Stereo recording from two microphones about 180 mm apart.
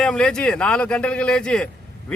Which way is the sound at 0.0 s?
5° left (ahead or behind).